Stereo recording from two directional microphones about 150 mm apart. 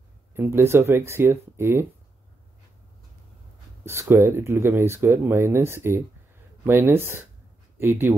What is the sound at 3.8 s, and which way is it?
Speech, 15° right (ahead or behind).